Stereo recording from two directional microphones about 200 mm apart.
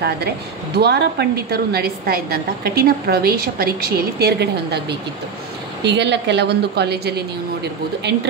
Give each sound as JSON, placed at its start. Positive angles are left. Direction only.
{"t": 0.7, "sound": "a woman's voice", "side_deg": -55}